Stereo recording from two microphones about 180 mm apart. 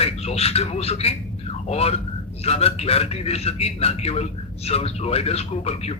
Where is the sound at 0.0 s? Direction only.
35° left (ahead or behind).